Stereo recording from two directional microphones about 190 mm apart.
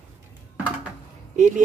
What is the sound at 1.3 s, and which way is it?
Speech, 40° right (ahead or behind).